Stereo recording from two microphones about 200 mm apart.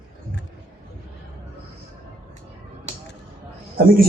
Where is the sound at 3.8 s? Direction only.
45° right (ahead or behind).